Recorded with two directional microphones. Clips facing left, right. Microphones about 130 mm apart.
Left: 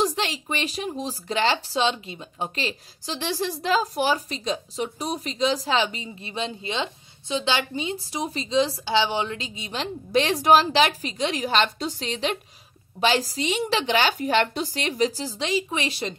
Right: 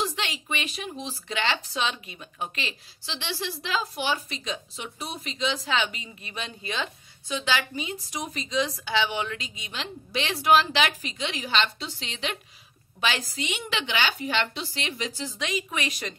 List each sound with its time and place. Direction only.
0.0 s speech: 35° left (ahead or behind)